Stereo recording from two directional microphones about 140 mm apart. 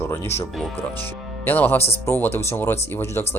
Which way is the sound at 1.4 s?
15° left (ahead or behind).